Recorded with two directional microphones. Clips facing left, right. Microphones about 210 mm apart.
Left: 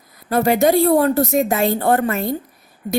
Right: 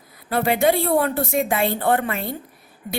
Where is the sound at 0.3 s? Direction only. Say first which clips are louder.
Left 4 dB; 40° left (ahead or behind).